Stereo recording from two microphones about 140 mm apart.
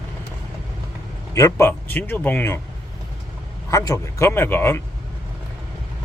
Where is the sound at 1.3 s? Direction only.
20° left (ahead or behind).